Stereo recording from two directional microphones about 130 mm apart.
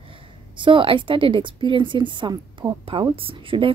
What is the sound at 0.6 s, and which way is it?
A woman's voice, 40° right (ahead or behind).